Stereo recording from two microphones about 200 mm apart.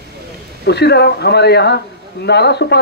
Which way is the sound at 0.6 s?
55° left (ahead or behind).